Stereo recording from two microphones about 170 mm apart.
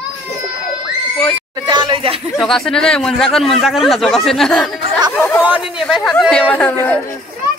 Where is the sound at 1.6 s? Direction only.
30° right (ahead or behind).